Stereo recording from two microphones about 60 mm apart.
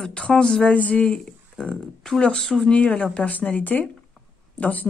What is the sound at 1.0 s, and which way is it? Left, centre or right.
A woman's voice, centre.